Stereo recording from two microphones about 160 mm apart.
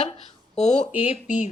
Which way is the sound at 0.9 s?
10° right (ahead or behind).